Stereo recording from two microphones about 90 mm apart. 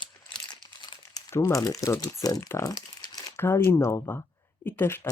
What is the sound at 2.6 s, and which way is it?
Crumpling, 45° left (ahead or behind).